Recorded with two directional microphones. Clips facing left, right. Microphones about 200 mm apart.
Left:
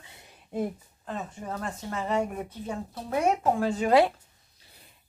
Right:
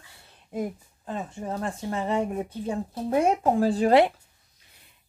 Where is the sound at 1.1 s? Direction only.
30° right (ahead or behind).